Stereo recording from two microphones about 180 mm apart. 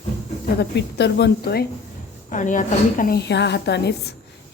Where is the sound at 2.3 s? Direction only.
45° left (ahead or behind); by 4.1 s 70° left (ahead or behind).